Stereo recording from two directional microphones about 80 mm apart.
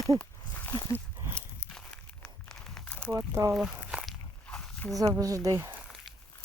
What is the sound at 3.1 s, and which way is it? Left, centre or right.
Speech, right.